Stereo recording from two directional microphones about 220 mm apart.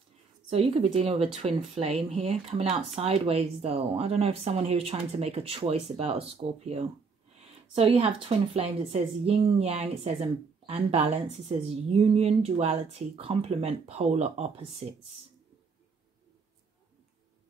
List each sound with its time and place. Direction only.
0.5 s a woman's voice: 25° right (ahead or behind)